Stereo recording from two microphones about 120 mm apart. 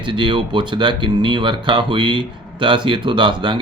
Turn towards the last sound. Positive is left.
turn(degrees=-40)  # may be behind; listen again after turning